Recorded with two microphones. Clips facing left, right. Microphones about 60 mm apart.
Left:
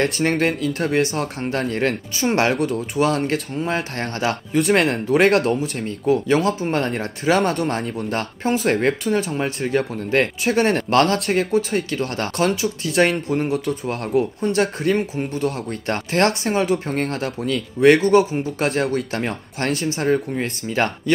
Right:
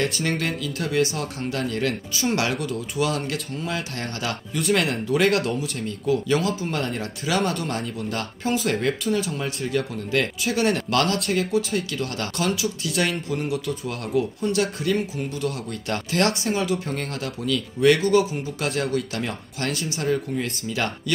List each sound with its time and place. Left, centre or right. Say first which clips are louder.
0.0 s speech: left 6 dB; left
3.5 s speech: left 5 dB; left
4.3 s speech: left 6 dB; left
4.7 s speech: left 3 dB; left
14.4 s speech: left 4 dB; left
18.0 s speech: left 4 dB; left